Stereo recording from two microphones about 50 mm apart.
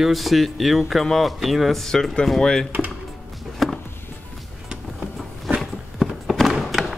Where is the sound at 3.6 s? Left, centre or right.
Centre.